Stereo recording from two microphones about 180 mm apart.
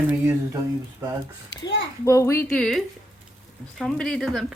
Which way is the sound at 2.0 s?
15° left (ahead or behind).